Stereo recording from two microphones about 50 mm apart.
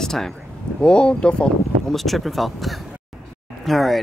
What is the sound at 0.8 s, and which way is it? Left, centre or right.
Speech, centre.